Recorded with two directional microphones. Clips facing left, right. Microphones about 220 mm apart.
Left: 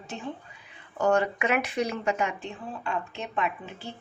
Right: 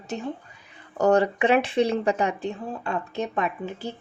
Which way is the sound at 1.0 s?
35° right (ahead or behind).